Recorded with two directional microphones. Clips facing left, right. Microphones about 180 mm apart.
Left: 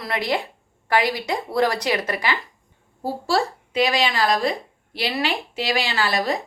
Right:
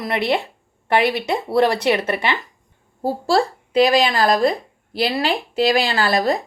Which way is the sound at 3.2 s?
35° right (ahead or behind).